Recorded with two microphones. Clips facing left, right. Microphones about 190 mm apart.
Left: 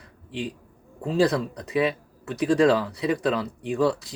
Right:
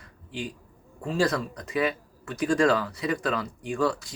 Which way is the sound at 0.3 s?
30° left (ahead or behind).